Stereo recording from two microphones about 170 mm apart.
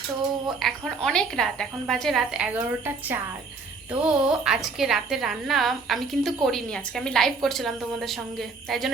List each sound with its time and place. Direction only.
0.6 s a woman's voice: 5° left (ahead or behind)